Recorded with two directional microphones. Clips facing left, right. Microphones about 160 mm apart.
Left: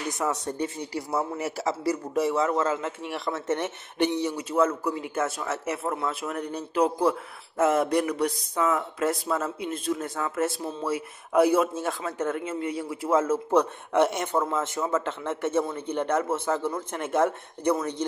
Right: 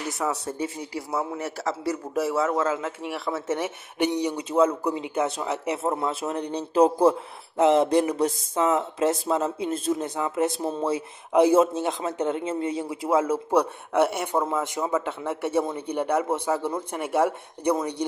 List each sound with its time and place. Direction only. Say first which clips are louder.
0.1 s a man's voice: even; centre (ahead or behind)